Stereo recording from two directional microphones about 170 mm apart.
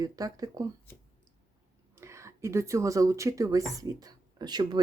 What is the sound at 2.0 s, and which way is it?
Speech, 15° right (ahead or behind).